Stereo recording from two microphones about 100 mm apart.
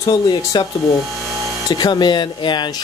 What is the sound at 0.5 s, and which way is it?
Speech, 50° left (ahead or behind).